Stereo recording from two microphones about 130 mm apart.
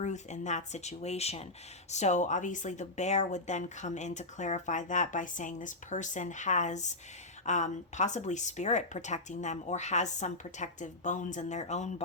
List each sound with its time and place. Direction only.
0.0 s speech: 65° left (ahead or behind)